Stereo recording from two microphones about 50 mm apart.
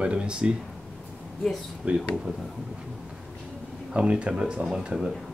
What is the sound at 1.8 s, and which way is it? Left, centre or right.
Speech, right.